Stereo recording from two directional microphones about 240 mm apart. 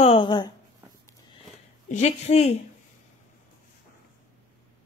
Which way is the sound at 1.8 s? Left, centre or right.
Left.